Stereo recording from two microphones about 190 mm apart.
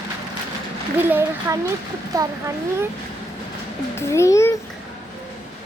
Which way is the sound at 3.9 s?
15° left (ahead or behind).